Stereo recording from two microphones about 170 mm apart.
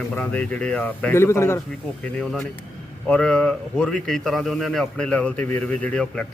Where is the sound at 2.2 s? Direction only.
Centre (ahead or behind).